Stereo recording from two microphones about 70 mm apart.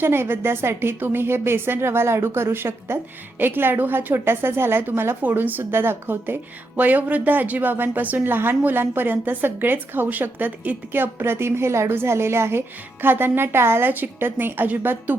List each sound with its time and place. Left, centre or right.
0.0 s a woman's voice: right